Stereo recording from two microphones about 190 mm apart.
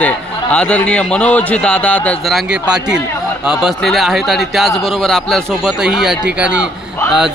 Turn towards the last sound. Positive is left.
turn(degrees=-5)  # may be behind; listen again after turning